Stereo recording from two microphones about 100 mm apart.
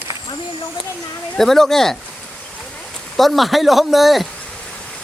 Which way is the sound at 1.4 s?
5° left (ahead or behind).